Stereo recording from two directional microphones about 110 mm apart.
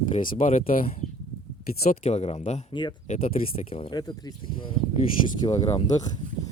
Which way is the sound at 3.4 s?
90° left.